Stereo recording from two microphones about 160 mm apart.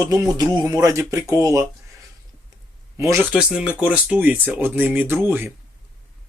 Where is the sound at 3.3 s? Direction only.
5° right (ahead or behind).